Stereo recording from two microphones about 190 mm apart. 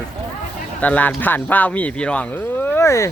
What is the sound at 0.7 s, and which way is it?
A woman's voice, 10° left (ahead or behind).